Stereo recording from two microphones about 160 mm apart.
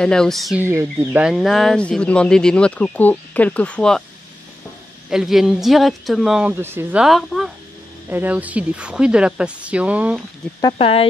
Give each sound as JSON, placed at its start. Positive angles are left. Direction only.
{"t": 0.0, "sound": "speech", "side_deg": 5}
{"t": 0.6, "sound": "a woman's voice", "side_deg": -15}
{"t": 1.2, "sound": "speech", "side_deg": 0}
{"t": 5.1, "sound": "speech", "side_deg": 0}
{"t": 6.6, "sound": "a woman's voice", "side_deg": -15}
{"t": 10.7, "sound": "speech", "side_deg": 35}